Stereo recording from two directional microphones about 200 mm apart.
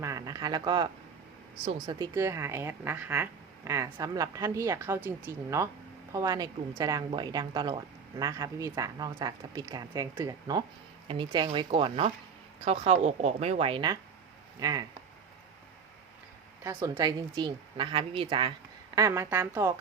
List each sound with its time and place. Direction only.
0.0 s a woman's voice: 15° right (ahead or behind)
16.6 s a woman's voice: 15° right (ahead or behind)
18.9 s a woman's voice: 15° right (ahead or behind)